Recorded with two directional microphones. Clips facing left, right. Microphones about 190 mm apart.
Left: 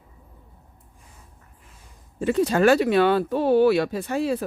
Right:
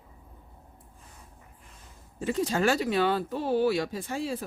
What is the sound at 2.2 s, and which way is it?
Speech, 65° left (ahead or behind).